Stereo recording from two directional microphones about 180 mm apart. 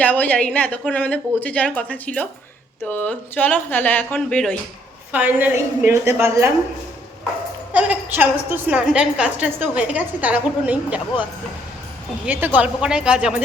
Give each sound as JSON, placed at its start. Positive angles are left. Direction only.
{"t": 0.0, "sound": "speech", "side_deg": 10}
{"t": 5.1, "sound": "a woman's voice", "side_deg": -10}
{"t": 7.7, "sound": "a woman's voice", "side_deg": -10}
{"t": 12.2, "sound": "a woman's voice", "side_deg": -10}